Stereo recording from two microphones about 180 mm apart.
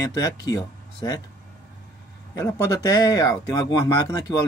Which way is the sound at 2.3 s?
20° left (ahead or behind).